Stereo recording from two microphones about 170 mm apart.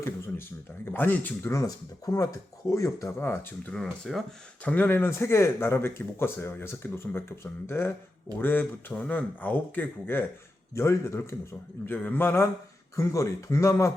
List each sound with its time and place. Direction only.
0.9 s speech: 10° left (ahead or behind)